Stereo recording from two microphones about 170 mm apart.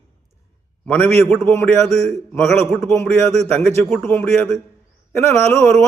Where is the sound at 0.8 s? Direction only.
10° left (ahead or behind).